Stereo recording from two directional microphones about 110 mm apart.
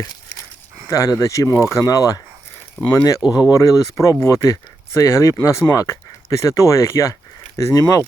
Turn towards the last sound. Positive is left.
turn(degrees=30)  # may be behind; listen again after turning